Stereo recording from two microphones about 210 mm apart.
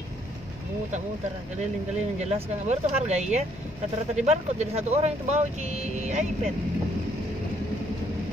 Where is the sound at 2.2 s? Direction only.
30° right (ahead or behind).